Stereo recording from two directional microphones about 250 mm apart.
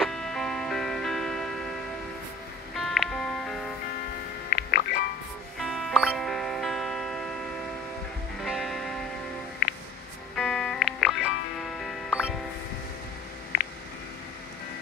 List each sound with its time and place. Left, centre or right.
0.0 s music: centre
4.5 s music: left
5.6 s music: centre
8.4 s music: centre
10.3 s music: centre